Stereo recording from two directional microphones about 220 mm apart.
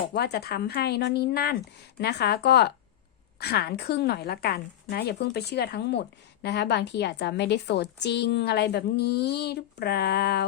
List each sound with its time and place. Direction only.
0.1 s a woman's voice: 45° left (ahead or behind)